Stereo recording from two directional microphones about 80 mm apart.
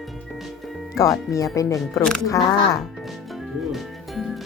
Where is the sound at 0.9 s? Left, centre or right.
Left.